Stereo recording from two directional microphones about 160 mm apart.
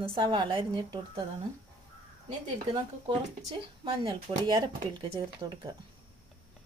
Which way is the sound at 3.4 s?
25° right (ahead or behind).